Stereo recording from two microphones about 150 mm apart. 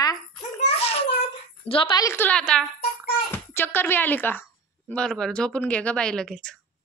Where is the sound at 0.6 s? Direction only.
40° left (ahead or behind).